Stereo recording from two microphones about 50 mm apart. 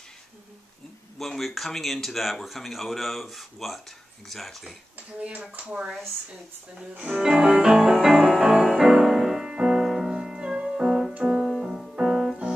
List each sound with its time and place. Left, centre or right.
1.1 s speech: centre
5.2 s speech: right
6.8 s speech: centre
7.2 s music: centre
11.4 s music: centre